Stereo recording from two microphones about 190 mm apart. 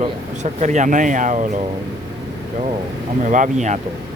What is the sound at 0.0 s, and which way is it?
Speech, 35° right (ahead or behind).